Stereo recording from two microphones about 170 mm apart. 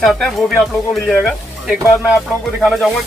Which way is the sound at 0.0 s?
Centre (ahead or behind).